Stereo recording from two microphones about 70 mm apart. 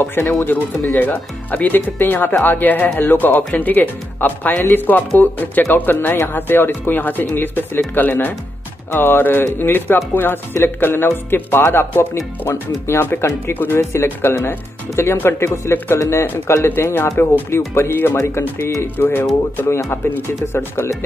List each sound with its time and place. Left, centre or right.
0.0 s speech: left
18.9 s speech: left